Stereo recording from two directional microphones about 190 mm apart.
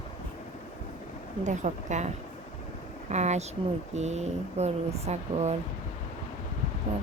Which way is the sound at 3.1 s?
35° right (ahead or behind).